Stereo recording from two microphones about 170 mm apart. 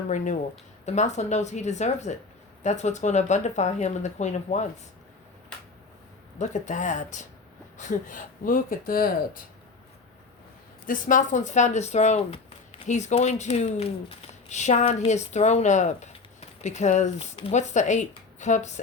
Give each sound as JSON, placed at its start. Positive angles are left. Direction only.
{"t": 0.9, "sound": "speech", "side_deg": 40}
{"t": 6.4, "sound": "speech", "side_deg": 45}
{"t": 10.8, "sound": "speech", "side_deg": 50}